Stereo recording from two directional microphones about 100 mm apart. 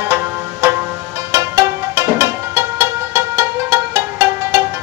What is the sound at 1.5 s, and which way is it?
Music, 30° right (ahead or behind).